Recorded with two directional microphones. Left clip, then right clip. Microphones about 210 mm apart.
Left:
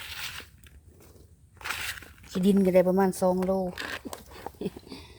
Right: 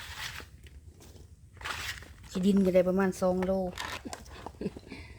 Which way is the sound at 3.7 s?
10° right (ahead or behind).